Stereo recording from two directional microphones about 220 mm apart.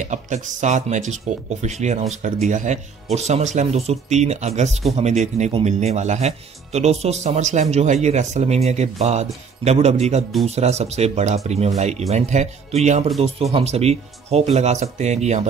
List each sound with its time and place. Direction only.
0.0 s speech: 35° right (ahead or behind)